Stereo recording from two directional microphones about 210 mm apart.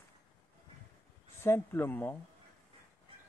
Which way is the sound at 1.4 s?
10° left (ahead or behind).